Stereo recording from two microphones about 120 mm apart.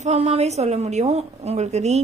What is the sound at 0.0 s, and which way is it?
A woman's voice, 65° right (ahead or behind).